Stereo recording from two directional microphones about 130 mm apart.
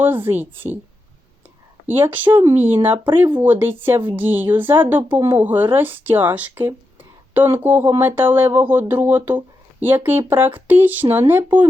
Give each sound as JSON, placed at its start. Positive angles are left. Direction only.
{"t": 0.0, "sound": "speech", "side_deg": -15}
{"t": 1.9, "sound": "speech", "side_deg": -15}
{"t": 2.9, "sound": "speech", "side_deg": -40}
{"t": 3.3, "sound": "speech", "side_deg": -15}